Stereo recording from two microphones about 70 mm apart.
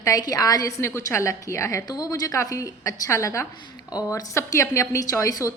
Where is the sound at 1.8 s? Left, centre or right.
Left.